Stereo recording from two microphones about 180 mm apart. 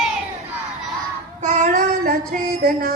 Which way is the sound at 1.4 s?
45° right (ahead or behind).